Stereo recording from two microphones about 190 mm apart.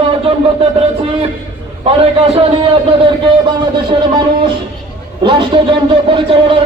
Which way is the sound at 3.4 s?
25° right (ahead or behind).